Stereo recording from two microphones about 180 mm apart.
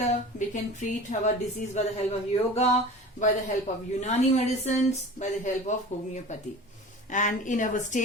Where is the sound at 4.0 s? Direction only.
35° left (ahead or behind).